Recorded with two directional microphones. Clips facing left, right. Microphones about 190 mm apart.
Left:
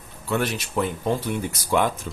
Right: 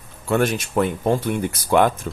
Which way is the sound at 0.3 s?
50° right (ahead or behind).